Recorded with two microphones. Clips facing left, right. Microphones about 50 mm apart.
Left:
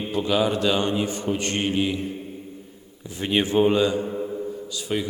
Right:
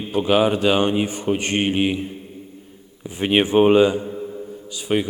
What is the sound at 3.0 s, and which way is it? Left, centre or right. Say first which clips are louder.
A man's voice: right 5 dB; right.